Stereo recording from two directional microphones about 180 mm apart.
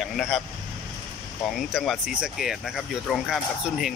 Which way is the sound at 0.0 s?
Centre (ahead or behind).